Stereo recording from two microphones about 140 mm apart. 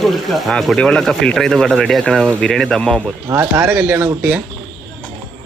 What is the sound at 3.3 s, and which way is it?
Speech, 20° right (ahead or behind).